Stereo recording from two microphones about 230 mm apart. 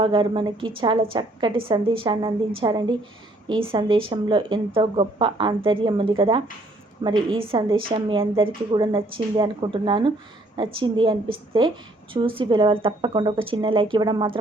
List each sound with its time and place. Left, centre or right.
0.0 s speech: right